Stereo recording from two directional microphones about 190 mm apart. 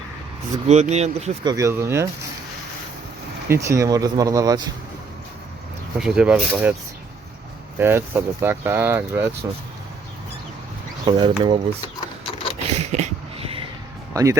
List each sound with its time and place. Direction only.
0.7 s speech: 35° right (ahead or behind)
1.5 s speech: 15° right (ahead or behind)
3.5 s speech: 15° right (ahead or behind)
6.0 s speech: 5° right (ahead or behind)
7.8 s speech: 10° right (ahead or behind)
11.0 s speech: 25° right (ahead or behind)
11.9 s a sound: 30° left (ahead or behind)
12.6 s a sound: 35° right (ahead or behind)
14.1 s speech: 15° right (ahead or behind)